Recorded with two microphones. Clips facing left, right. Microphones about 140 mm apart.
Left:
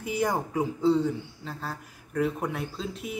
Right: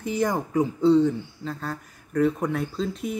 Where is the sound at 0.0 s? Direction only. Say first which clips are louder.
Right 2 dB; 10° left (ahead or behind).